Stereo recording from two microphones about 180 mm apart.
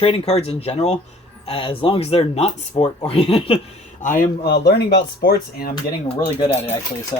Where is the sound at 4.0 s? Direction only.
50° left (ahead or behind).